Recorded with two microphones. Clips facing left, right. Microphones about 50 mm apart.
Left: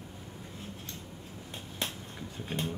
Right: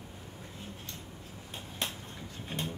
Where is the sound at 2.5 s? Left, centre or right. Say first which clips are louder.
Left 2 dB; centre.